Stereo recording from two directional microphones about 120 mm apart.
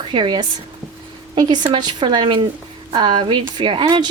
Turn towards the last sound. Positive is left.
turn(degrees=-40)  # may be behind; listen again after turning